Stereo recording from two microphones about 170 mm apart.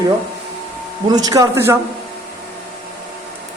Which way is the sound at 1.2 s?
20° right (ahead or behind).